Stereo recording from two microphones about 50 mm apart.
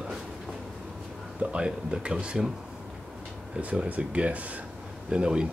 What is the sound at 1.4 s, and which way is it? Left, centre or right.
Speech, right.